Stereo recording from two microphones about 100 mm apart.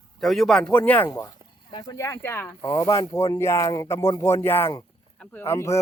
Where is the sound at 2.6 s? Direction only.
35° left (ahead or behind).